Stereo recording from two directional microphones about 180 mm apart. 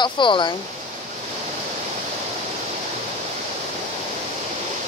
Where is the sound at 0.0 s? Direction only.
25° left (ahead or behind).